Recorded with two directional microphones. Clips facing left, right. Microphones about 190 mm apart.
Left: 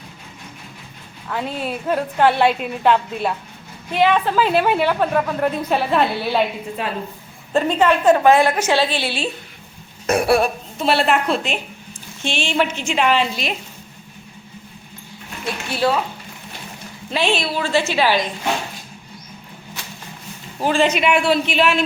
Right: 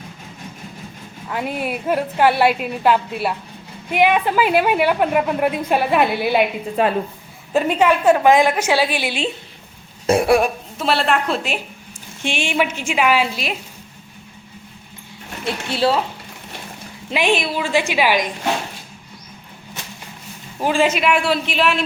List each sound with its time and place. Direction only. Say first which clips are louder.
1.3 s a woman's voice: right 1 dB; 10° right (ahead or behind)
7.5 s a woman's voice: even; 10° right (ahead or behind)
10.8 s a man's voice: left 1 dB; centre (ahead or behind)
12.2 s a woman's voice: even; 15° right (ahead or behind)
15.7 s speech: right 1 dB; 30° right (ahead or behind)
17.1 s a woman's voice: right 1 dB; 15° right (ahead or behind)
20.6 s a man's voice: even; 10° right (ahead or behind)